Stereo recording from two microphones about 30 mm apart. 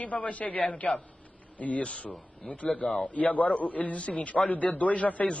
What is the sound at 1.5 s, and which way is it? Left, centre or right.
Speech, left.